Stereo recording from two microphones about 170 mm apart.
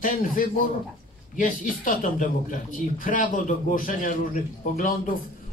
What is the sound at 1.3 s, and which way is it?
Speech, 50° left (ahead or behind).